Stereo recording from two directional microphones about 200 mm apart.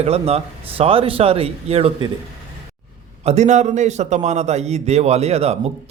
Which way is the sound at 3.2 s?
35° right (ahead or behind).